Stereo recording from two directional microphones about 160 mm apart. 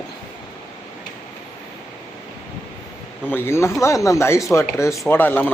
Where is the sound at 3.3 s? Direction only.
15° left (ahead or behind).